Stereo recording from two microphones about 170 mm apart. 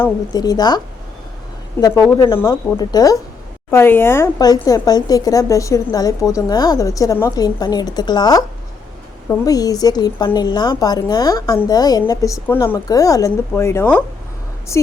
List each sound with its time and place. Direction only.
0.0 s speech: 20° left (ahead or behind)
2.4 s a woman's voice: 20° left (ahead or behind)